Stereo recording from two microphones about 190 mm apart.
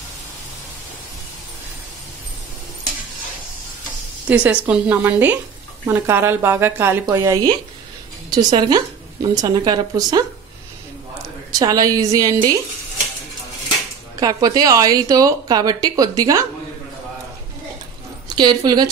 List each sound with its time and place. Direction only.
4.3 s a woman's voice: 10° right (ahead or behind)
11.5 s a woman's voice: 20° right (ahead or behind)
14.2 s a woman's voice: 20° right (ahead or behind)
18.3 s a woman's voice: 25° right (ahead or behind)